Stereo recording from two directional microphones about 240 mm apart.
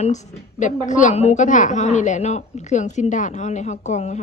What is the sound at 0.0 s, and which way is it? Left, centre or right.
A woman's voice, left.